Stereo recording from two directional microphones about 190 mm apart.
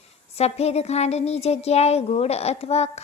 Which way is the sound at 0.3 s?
35° left (ahead or behind).